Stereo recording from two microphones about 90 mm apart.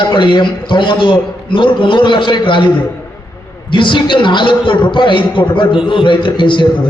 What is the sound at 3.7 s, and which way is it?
A man's voice, 60° left (ahead or behind).